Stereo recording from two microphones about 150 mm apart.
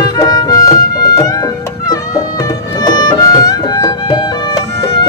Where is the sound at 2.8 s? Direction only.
30° left (ahead or behind).